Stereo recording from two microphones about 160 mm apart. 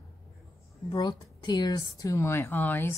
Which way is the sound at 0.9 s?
25° left (ahead or behind).